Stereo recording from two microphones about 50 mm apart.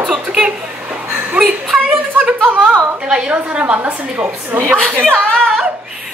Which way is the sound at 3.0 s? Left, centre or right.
Centre.